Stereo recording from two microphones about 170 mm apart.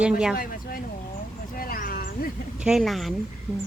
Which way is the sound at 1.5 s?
55° left (ahead or behind).